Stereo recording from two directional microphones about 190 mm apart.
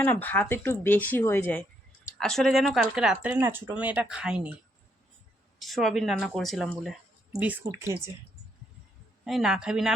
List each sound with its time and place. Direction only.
0.0 s speech: 10° left (ahead or behind)
5.5 s speech: centre (ahead or behind); by 8.1 s 15° right (ahead or behind)
9.2 s speech: centre (ahead or behind)